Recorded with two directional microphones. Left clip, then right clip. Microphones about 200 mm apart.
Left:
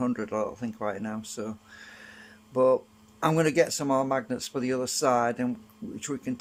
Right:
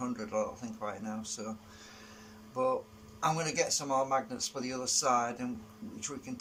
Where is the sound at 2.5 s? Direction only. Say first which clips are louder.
Left 9 dB; 40° left (ahead or behind).